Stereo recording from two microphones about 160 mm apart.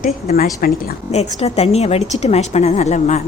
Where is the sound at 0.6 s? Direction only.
60° left (ahead or behind).